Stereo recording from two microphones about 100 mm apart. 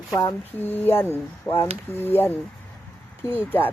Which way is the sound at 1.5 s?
35° left (ahead or behind).